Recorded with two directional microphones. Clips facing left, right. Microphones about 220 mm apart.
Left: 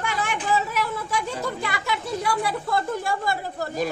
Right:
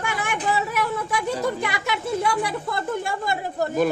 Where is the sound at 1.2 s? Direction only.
20° right (ahead or behind).